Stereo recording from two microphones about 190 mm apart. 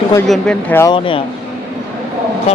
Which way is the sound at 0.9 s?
25° left (ahead or behind).